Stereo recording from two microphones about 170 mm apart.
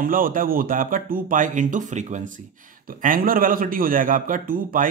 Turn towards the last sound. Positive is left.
turn(degrees=-55)  # may be behind; listen again after turning